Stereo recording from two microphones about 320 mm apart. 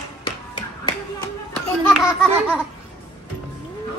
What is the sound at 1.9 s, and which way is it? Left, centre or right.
Speech, centre.